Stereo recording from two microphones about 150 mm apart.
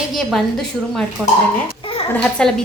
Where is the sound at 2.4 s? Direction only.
5° left (ahead or behind).